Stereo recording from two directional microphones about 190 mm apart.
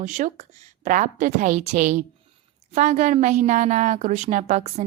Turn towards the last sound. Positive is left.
turn(degrees=-40)  # may be behind; listen again after turning